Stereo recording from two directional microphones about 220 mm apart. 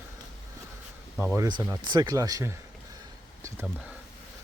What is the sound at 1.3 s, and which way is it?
Speech, 15° right (ahead or behind).